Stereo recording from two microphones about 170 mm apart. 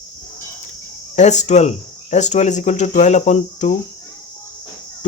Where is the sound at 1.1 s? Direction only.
45° left (ahead or behind).